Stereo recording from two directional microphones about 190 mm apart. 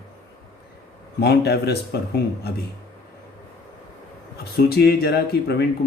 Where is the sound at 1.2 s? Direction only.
60° left (ahead or behind).